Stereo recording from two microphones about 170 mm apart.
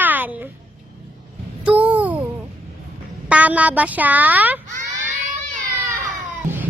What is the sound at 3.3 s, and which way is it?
Child singing, 10° right (ahead or behind).